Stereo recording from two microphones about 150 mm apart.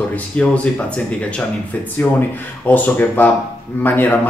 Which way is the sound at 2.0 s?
15° left (ahead or behind).